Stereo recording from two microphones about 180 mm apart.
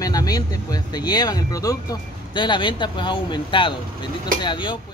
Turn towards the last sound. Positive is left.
turn(degrees=25)  # may be behind; listen again after turning